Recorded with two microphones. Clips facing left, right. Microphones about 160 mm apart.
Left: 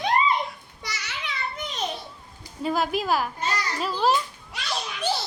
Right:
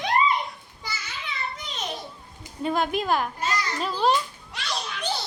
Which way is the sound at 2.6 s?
Centre (ahead or behind).